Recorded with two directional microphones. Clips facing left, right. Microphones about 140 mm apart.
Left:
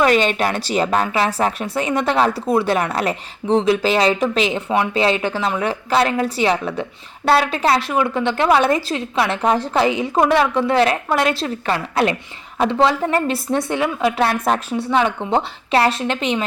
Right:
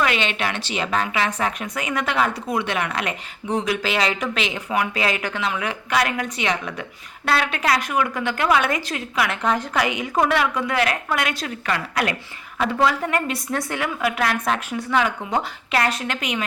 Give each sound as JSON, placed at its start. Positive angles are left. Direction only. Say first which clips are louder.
{"t": 0.0, "sound": "a woman's voice", "louder": "left 7 dB", "side_deg": 40}
{"t": 10.2, "sound": "a woman's voice", "louder": "left 4 dB", "side_deg": 20}
{"t": 10.4, "sound": "a woman's voice", "louder": "left 6 dB", "side_deg": 30}